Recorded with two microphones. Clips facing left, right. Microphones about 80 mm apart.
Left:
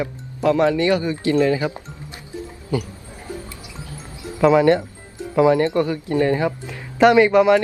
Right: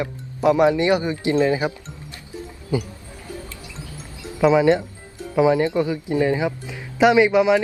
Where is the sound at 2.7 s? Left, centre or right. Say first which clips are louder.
Even; right.